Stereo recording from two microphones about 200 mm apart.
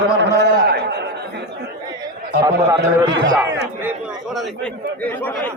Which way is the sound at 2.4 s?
15° right (ahead or behind).